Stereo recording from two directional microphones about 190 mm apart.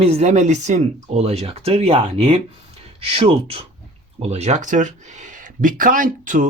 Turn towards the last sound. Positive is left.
turn(degrees=-45)  # may be behind; listen again after turning